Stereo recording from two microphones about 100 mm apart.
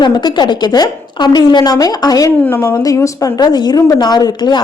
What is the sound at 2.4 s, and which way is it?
A woman's voice, 20° left (ahead or behind).